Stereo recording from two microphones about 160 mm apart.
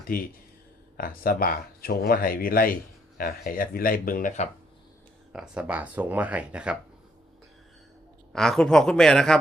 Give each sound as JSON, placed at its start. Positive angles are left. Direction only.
{"t": 0.1, "sound": "speech", "side_deg": 65}
{"t": 5.3, "sound": "speech", "side_deg": -5}
{"t": 8.3, "sound": "speech", "side_deg": 5}